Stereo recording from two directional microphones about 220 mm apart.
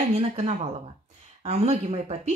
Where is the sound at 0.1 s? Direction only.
30° right (ahead or behind).